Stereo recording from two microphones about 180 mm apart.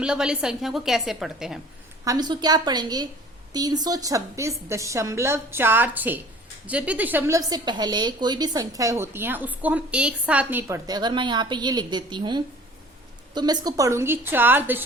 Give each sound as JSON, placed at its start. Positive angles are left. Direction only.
{"t": 0.0, "sound": "a woman's voice", "side_deg": -5}
{"t": 2.0, "sound": "a woman's voice", "side_deg": -25}